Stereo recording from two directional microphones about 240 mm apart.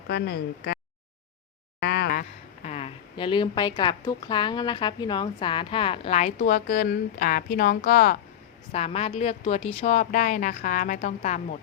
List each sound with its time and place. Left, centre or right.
0.1 s speech: left
1.8 s a sound: left
2.6 s a woman's voice: left
8.7 s a woman's voice: left